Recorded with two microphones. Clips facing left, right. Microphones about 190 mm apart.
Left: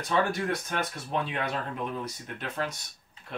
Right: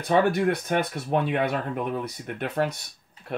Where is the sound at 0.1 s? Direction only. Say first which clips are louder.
Right 6 dB; 60° right (ahead or behind).